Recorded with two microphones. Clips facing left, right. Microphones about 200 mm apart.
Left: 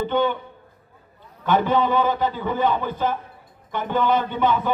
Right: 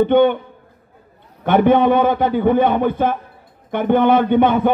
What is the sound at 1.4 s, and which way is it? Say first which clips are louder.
Speech: right 7 dB; 60° right (ahead or behind).